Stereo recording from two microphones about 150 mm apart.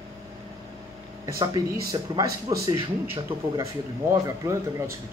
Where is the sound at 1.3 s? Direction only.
20° right (ahead or behind).